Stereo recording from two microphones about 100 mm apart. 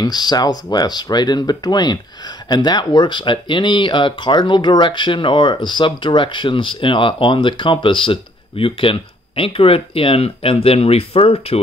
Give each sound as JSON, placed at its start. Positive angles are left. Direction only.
{"t": 0.0, "sound": "speech", "side_deg": 40}